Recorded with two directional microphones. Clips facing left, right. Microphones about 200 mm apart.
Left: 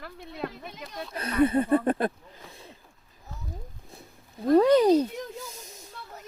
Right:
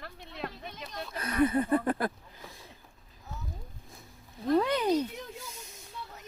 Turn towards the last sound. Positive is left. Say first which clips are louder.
# left 8 dB
turn(degrees=35)  # may be behind; listen again after turning